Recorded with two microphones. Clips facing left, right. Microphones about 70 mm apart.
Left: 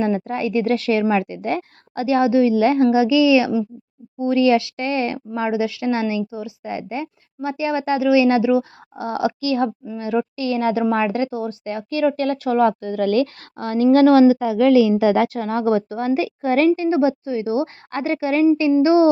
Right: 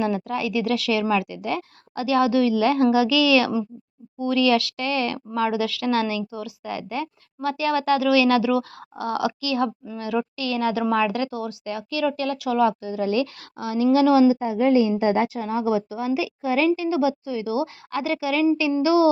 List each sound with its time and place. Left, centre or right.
0.0 s a woman's voice: left
14.3 s a woman's voice: left